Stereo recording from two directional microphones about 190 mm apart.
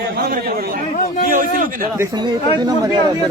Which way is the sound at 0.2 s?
50° right (ahead or behind).